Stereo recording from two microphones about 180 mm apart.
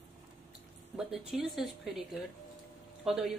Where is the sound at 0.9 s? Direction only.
5° right (ahead or behind).